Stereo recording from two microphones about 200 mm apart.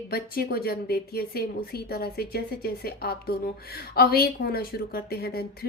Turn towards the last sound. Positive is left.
turn(degrees=50)  # may be behind; listen again after turning